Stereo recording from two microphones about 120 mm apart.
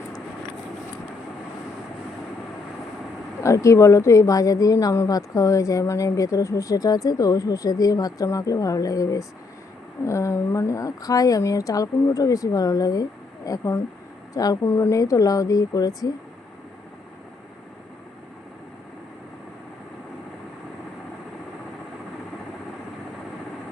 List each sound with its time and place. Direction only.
3.4 s speech: 25° left (ahead or behind)